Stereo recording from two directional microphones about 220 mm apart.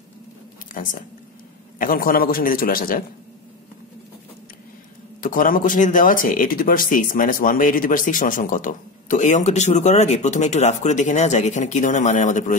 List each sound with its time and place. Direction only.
0.8 s speech: 40° left (ahead or behind)
5.2 s speech: 40° left (ahead or behind)